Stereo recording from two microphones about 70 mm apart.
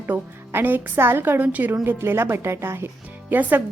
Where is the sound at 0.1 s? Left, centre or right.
Right.